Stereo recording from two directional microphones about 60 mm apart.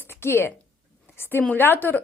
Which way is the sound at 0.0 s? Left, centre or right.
Left.